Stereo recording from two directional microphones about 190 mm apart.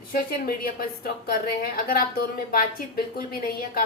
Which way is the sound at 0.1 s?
50° left (ahead or behind).